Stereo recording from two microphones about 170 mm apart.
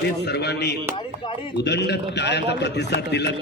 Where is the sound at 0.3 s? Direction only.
75° left (ahead or behind).